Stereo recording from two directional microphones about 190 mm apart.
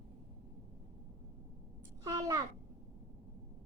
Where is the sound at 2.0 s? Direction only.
20° right (ahead or behind).